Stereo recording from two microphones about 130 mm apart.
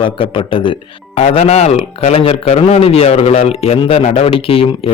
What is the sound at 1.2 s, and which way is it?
Speech, 55° left (ahead or behind).